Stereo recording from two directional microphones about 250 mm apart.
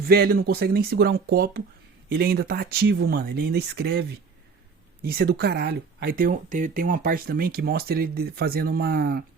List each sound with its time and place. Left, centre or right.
0.0 s speech: right